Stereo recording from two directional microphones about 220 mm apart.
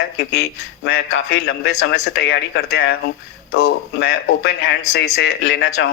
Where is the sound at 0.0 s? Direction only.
50° left (ahead or behind).